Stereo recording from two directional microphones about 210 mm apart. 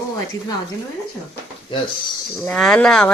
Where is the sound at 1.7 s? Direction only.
20° left (ahead or behind).